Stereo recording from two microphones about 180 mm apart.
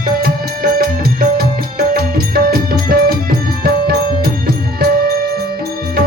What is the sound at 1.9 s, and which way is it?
Music, 55° right (ahead or behind).